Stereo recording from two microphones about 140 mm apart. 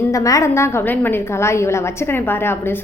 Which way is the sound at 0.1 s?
25° left (ahead or behind).